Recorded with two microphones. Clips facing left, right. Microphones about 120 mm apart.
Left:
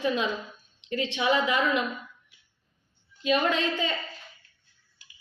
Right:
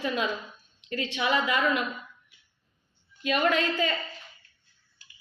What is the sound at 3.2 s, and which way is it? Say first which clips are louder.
Speech: even; 20° left (ahead or behind).